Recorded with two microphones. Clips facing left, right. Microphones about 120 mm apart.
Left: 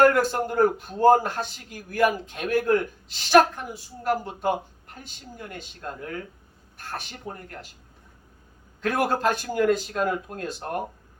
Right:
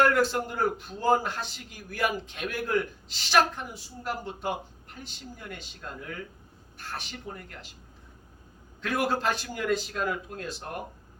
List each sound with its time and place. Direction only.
0.0 s a man's voice: 50° left (ahead or behind)
8.8 s a man's voice: 50° left (ahead or behind)